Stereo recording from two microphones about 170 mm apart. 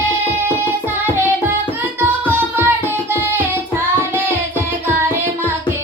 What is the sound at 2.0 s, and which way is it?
Music, 15° right (ahead or behind).